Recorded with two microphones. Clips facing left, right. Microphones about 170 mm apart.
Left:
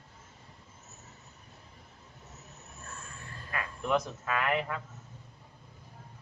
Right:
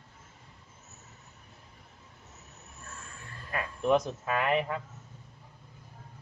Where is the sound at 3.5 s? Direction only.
25° right (ahead or behind).